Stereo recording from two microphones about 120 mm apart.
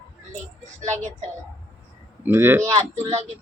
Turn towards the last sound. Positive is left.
turn(degrees=-65)  # may be behind; listen again after turning